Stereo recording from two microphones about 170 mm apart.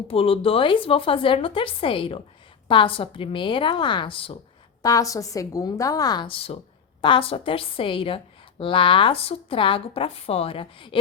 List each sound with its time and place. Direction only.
0.1 s a woman's voice: 35° left (ahead or behind)
4.8 s a woman's voice: 20° left (ahead or behind)